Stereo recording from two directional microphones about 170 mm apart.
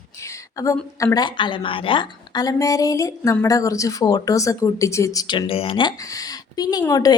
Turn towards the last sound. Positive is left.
turn(degrees=20)  # may be behind; listen again after turning